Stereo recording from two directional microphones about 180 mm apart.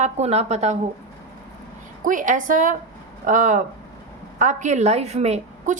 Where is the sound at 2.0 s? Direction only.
45° right (ahead or behind).